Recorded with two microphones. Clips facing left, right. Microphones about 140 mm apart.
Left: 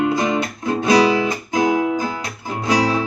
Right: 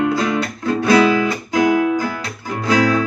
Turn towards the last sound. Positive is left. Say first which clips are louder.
# right 2 dB
turn(degrees=25)  # may be behind; listen again after turning